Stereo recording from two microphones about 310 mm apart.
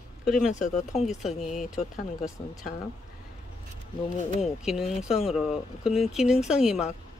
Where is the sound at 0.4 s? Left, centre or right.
Left.